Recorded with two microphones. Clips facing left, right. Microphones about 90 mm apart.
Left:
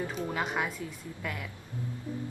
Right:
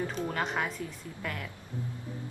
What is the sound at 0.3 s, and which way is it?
Speech, 5° left (ahead or behind).